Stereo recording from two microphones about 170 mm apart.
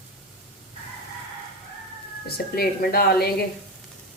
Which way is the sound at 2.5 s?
65° left (ahead or behind).